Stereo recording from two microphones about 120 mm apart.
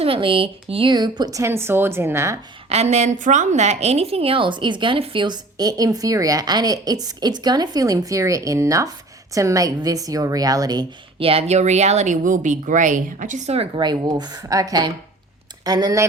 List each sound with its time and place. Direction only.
0.0 s a woman's voice: 50° right (ahead or behind); by 2.4 s 25° right (ahead or behind)
2.6 s a woman's voice: 65° right (ahead or behind); by 10.8 s 35° right (ahead or behind)
11.2 s speech: 55° right (ahead or behind)
13.7 s a woman's voice: 35° right (ahead or behind)